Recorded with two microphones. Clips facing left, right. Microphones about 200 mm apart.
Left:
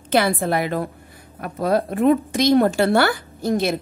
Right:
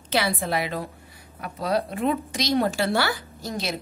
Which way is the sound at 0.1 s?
50° left (ahead or behind).